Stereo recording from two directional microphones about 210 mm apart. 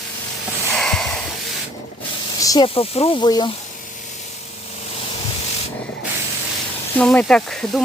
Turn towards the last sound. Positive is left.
turn(degrees=5)  # may be behind; listen again after turning